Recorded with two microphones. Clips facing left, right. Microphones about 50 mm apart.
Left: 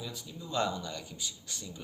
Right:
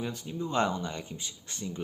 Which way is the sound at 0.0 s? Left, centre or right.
Right.